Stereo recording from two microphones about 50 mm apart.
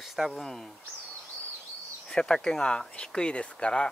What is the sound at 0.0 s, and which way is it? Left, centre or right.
Speech, centre.